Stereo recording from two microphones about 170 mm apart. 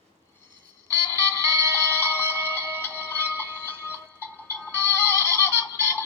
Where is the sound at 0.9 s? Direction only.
15° left (ahead or behind).